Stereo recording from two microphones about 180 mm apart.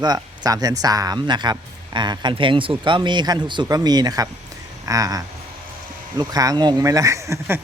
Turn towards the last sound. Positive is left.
turn(degrees=-15)  # may be behind; listen again after turning